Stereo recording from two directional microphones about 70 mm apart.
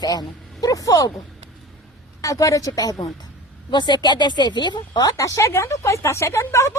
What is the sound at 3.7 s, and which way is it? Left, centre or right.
Speech, left.